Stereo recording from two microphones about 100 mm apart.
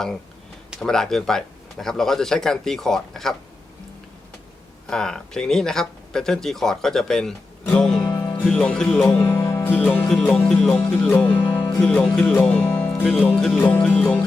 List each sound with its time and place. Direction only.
0.8 s speech: 5° left (ahead or behind)
4.9 s speech: 5° left (ahead or behind)
7.6 s music: 10° left (ahead or behind)
8.6 s speech: 10° left (ahead or behind)
9.1 s music: 25° left (ahead or behind)
9.7 s speech: 15° left (ahead or behind)
10.8 s speech: 15° left (ahead or behind)
13.6 s speech: 15° left (ahead or behind)